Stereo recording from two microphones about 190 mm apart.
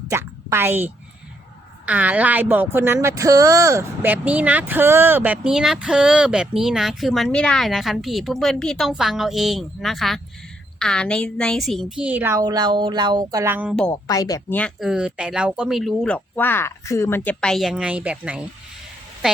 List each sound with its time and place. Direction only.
0.1 s a woman's voice: 15° right (ahead or behind)
1.9 s a woman's voice: 5° right (ahead or behind)
13.9 s a woman's voice: 20° left (ahead or behind)
14.6 s speech: centre (ahead or behind)